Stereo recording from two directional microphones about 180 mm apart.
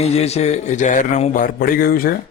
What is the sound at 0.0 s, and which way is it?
A man's voice, 35° left (ahead or behind).